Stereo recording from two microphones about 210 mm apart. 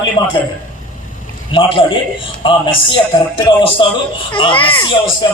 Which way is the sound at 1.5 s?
25° left (ahead or behind).